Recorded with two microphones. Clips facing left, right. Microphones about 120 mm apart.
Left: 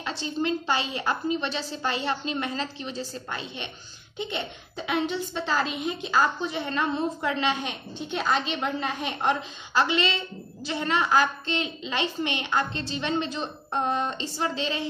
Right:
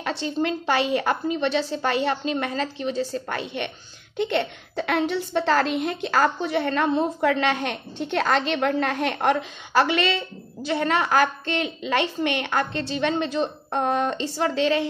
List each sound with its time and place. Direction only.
0.0 s a woman's voice: 60° right (ahead or behind)